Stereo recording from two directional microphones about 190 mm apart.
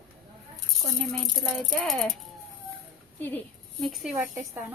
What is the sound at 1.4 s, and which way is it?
Speech, centre (ahead or behind).